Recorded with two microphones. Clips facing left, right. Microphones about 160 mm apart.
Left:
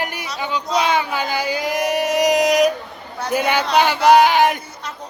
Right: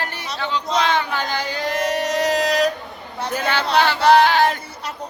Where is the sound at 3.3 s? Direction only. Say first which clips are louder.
Left 2 dB; 15° left (ahead or behind).